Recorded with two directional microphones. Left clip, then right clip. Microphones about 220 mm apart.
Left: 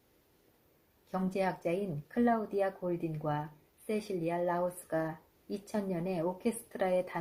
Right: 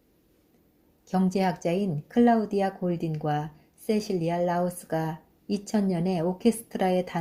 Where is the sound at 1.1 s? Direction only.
40° right (ahead or behind).